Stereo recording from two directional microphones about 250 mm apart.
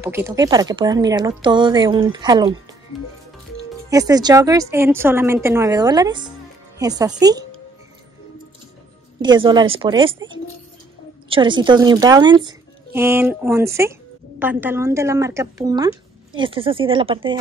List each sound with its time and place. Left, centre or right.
0.0 s speech: centre
3.9 s speech: centre
9.2 s speech: centre
11.2 s speech: centre